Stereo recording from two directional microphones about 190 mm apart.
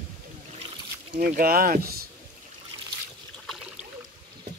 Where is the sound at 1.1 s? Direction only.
50° right (ahead or behind).